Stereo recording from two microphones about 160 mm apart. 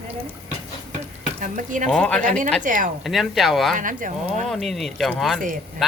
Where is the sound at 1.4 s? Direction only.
55° right (ahead or behind).